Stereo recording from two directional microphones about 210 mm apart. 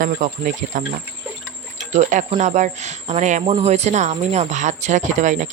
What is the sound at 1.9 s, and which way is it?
Speech, 35° right (ahead or behind).